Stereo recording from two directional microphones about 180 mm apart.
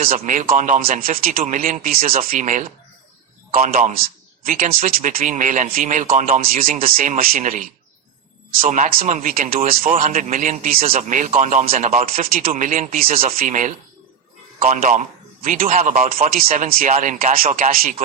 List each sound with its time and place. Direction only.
0.0 s a man's voice: 50° right (ahead or behind)